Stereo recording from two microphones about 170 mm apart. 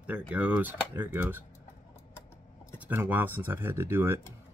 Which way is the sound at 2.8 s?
10° right (ahead or behind).